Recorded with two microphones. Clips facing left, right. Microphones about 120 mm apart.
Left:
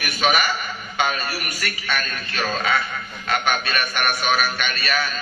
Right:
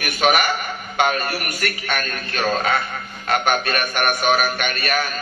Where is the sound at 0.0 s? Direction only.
55° right (ahead or behind).